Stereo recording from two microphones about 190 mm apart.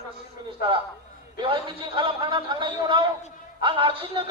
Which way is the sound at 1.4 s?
25° right (ahead or behind).